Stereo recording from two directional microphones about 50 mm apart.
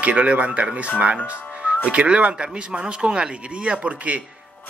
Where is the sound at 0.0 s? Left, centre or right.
Right.